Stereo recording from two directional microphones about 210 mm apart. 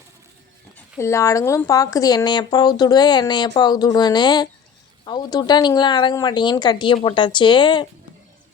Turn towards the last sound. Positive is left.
turn(degrees=20)  # may be behind; listen again after turning